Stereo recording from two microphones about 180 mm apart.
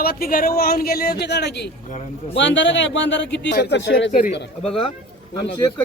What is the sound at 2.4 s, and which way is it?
A man's voice, 90° left.